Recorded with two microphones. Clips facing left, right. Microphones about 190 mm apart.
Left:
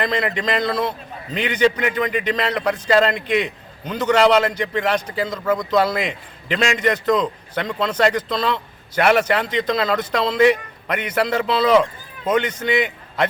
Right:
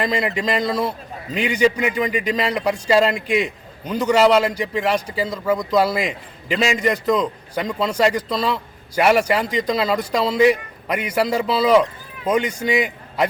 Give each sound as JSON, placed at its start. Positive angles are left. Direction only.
{"t": 0.0, "sound": "a man's voice", "side_deg": -10}